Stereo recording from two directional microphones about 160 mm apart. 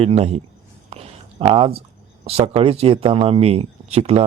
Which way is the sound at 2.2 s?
40° right (ahead or behind).